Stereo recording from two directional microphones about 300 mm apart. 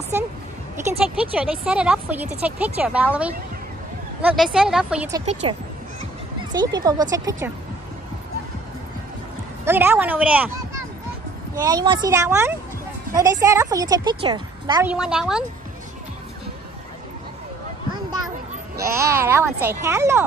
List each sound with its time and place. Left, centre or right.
0.9 s speech: centre
5.1 s speech: right
6.5 s a woman's voice: centre
9.7 s speech: centre
11.5 s a woman's voice: centre
18.9 s a woman's voice: centre